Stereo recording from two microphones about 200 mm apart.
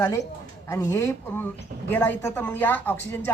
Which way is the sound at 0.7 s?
10° left (ahead or behind).